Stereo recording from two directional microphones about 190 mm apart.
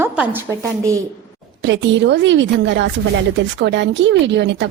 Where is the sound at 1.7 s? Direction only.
65° right (ahead or behind).